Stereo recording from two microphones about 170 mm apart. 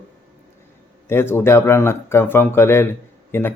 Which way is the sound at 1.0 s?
15° left (ahead or behind).